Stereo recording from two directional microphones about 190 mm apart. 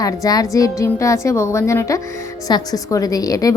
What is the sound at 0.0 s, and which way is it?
A woman's voice, 20° left (ahead or behind).